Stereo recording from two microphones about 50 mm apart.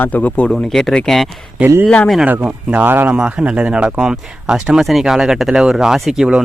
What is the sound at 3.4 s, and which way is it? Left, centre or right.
Speech, right.